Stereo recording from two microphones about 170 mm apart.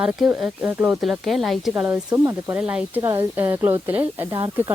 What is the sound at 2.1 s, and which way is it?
Speech, 15° right (ahead or behind).